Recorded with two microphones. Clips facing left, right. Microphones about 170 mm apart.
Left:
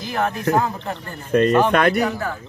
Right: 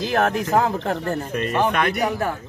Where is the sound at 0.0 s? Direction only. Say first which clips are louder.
Right 2 dB; 85° right.